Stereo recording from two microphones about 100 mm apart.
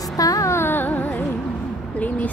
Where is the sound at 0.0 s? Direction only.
35° left (ahead or behind); by 1.2 s 15° left (ahead or behind).